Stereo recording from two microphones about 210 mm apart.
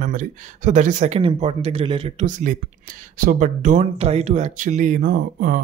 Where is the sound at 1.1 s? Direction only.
25° right (ahead or behind).